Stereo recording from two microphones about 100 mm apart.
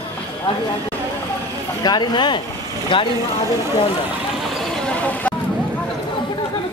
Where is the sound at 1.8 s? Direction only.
45° left (ahead or behind).